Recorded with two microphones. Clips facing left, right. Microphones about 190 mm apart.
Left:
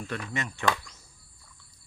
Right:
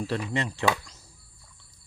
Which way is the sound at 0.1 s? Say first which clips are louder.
Right 4 dB; 30° right (ahead or behind).